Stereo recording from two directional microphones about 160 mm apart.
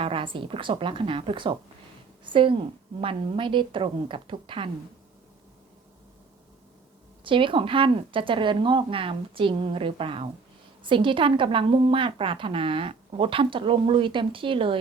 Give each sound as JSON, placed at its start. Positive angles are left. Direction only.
{"t": 0.0, "sound": "a woman's voice", "side_deg": -35}
{"t": 7.3, "sound": "a woman's voice", "side_deg": -30}